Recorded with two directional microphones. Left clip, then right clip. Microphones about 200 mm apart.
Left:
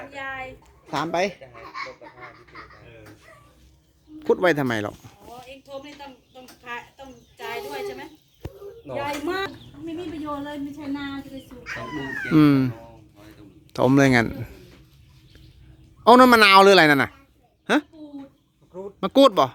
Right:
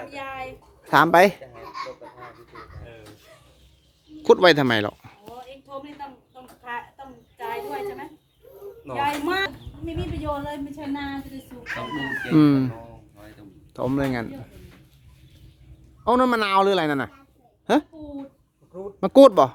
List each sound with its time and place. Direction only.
0.1 s a woman's voice: 45° right (ahead or behind)
4.2 s speech: 10° right (ahead or behind)
5.5 s a sound: 45° right (ahead or behind)
8.9 s a woman's voice: 50° right (ahead or behind)
12.3 s speech: centre (ahead or behind)
12.7 s a sound: 55° right (ahead or behind)
13.7 s speech: 25° left (ahead or behind)
16.0 s speech: 25° left (ahead or behind)
17.7 s speech: 5° right (ahead or behind)
18.9 s speech: 10° right (ahead or behind)